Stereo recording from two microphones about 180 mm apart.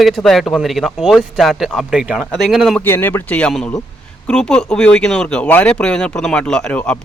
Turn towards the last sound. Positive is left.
turn(degrees=5)  # may be behind; listen again after turning